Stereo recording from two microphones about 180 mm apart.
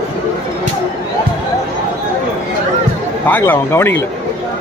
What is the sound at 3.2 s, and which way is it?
Speech, 10° left (ahead or behind).